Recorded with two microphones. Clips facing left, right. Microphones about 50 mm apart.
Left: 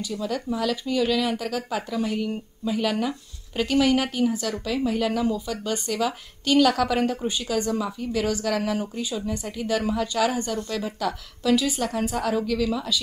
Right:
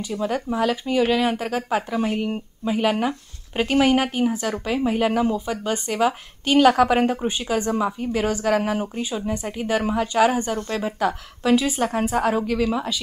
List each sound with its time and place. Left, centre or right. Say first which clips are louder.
0.0 s speech: right 3 dB; right